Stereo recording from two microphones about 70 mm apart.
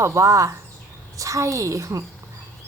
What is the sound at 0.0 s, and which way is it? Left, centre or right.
A woman's voice, right.